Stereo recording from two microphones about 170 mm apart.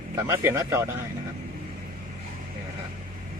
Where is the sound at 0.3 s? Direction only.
15° right (ahead or behind).